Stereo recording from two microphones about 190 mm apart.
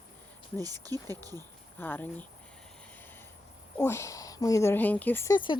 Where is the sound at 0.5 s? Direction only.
20° right (ahead or behind).